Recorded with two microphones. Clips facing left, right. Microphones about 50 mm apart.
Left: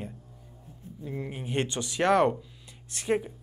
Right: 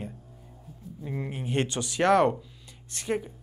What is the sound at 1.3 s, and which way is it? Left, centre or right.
Speech, centre.